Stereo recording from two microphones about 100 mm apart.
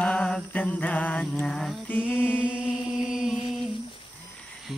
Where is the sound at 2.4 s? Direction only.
10° right (ahead or behind).